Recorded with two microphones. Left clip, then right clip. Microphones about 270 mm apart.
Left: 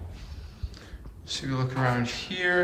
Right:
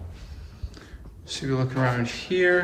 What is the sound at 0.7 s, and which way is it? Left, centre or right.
Speech, centre.